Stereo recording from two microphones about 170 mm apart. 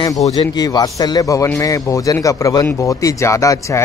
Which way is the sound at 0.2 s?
20° left (ahead or behind).